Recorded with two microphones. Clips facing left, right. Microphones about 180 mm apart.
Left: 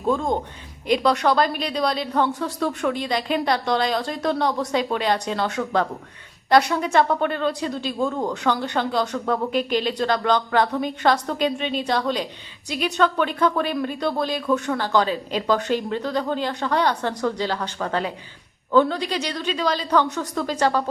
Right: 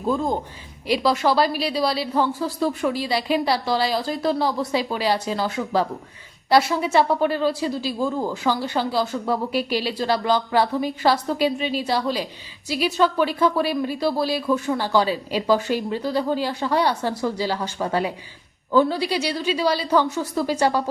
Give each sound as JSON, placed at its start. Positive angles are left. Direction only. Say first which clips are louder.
{"t": 0.0, "sound": "a woman's voice", "louder": "left 1 dB", "side_deg": -5}